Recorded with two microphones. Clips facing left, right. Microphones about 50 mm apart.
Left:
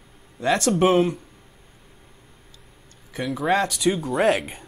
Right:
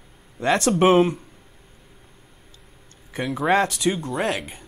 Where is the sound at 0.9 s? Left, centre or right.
Centre.